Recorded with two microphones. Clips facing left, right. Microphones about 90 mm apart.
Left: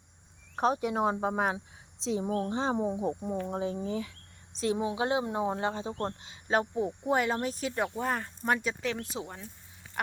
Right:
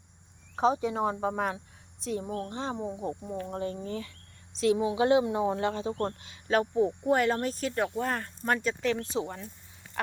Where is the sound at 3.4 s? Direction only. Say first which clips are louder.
Right 1 dB; 5° left (ahead or behind).